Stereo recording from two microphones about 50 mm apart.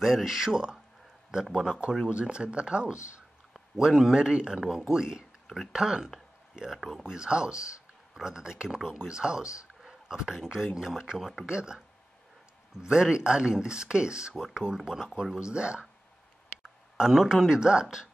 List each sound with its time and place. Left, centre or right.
0.0 s speech: centre
2.0 s speech: centre
12.8 s speech: centre
16.9 s speech: centre